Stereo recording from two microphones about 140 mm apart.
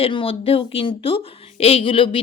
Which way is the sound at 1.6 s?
45° left (ahead or behind).